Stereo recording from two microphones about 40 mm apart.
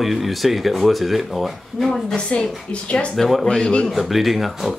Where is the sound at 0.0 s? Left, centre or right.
Centre.